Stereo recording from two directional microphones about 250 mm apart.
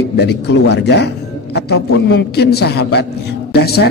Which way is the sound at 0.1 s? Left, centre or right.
Left.